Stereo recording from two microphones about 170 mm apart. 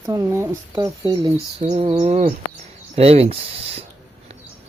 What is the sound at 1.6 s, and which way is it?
Speech, 40° right (ahead or behind).